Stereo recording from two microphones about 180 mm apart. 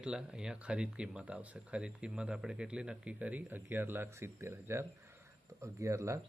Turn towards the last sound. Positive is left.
turn(degrees=-15)  # may be behind; listen again after turning